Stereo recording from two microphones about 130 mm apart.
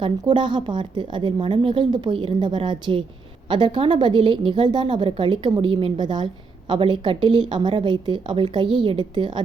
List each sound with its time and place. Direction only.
0.0 s a woman's voice: 40° right (ahead or behind)